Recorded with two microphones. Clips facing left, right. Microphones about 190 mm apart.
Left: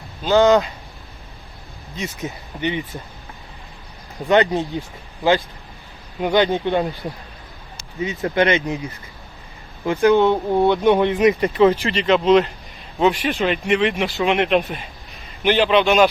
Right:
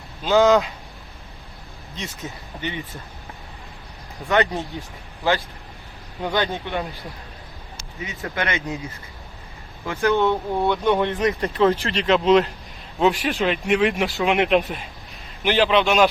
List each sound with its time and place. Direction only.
0.2 s speech: centre (ahead or behind)
2.2 s speech: 20° left (ahead or behind)
4.3 s speech: 20° left (ahead or behind)
6.1 s speech: 20° left (ahead or behind)
8.2 s speech: 20° left (ahead or behind)
9.8 s speech: 15° left (ahead or behind)
11.4 s speech: centre (ahead or behind)